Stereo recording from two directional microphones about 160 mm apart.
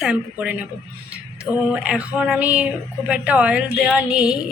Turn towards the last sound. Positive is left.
turn(degrees=-5)  # may be behind; listen again after turning